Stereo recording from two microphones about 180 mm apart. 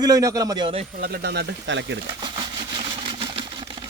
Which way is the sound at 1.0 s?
60° right (ahead or behind).